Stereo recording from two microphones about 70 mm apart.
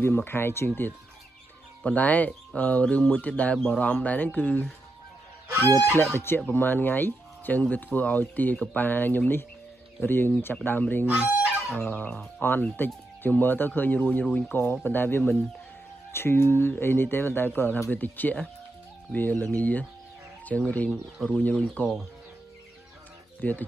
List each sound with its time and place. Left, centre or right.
0.0 s speech: left
2.0 s speech: left
6.1 s speech: left
23.4 s speech: left